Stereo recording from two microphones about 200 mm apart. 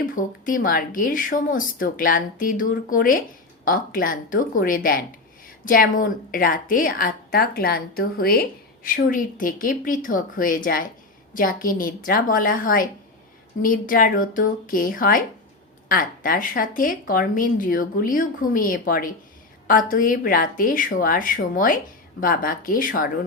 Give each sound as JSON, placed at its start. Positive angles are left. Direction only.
{"t": 0.0, "sound": "a woman's voice", "side_deg": 45}